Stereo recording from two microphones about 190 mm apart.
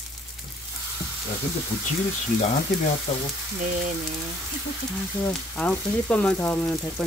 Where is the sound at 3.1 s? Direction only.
40° left (ahead or behind).